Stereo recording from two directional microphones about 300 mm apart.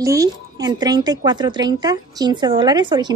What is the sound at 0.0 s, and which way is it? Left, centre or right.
Speech, centre.